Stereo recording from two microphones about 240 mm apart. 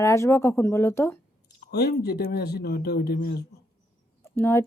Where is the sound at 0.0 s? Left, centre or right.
Centre.